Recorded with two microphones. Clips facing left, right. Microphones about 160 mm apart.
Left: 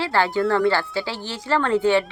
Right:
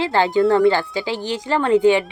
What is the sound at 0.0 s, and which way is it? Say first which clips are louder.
A woman's voice: right 4 dB; 20° right (ahead or behind).